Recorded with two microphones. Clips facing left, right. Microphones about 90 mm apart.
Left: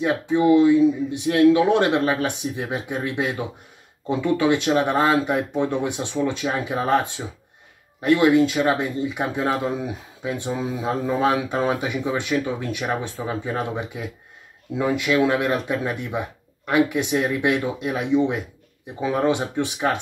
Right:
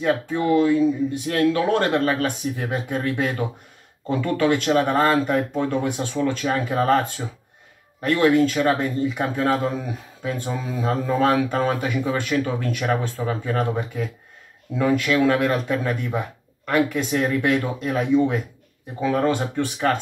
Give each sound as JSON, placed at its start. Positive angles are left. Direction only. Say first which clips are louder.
{"t": 0.0, "sound": "speech", "louder": "left 2 dB", "side_deg": 15}